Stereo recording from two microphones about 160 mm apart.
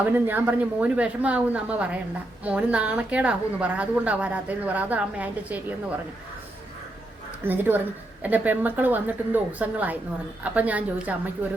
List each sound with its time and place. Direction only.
0.0 s a woman's voice: 10° right (ahead or behind)
7.4 s a woman's voice: 10° right (ahead or behind)